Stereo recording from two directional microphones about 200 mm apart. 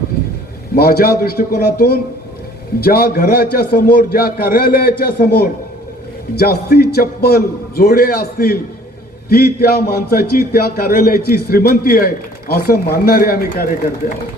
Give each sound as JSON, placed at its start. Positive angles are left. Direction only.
{"t": 0.8, "sound": "speech", "side_deg": 50}